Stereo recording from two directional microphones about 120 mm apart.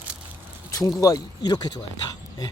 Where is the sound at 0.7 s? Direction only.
30° left (ahead or behind).